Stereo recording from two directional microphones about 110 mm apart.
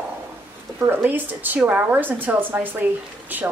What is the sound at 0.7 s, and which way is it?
Speech, 20° right (ahead or behind).